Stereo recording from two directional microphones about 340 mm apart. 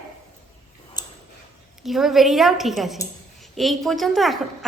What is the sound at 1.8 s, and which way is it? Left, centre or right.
A woman's voice, centre.